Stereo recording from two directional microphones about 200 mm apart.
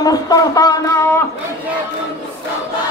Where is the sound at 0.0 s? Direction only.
20° left (ahead or behind).